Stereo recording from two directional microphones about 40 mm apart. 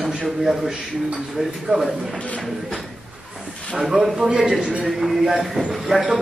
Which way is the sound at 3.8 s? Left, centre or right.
Centre.